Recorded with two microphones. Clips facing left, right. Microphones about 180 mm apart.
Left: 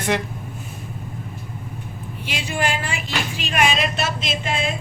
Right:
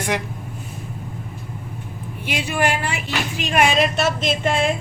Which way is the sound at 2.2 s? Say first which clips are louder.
Right 3 dB; 55° right (ahead or behind).